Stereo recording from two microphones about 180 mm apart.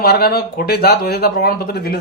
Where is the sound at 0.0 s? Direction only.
60° left (ahead or behind).